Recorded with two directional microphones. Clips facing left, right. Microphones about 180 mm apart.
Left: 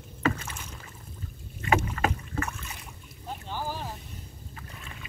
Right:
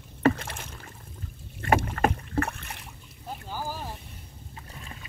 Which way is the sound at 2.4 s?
60° right (ahead or behind).